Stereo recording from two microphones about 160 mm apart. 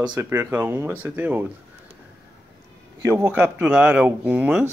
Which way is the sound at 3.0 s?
15° right (ahead or behind).